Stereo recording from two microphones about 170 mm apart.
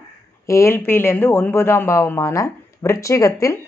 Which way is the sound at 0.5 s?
15° left (ahead or behind).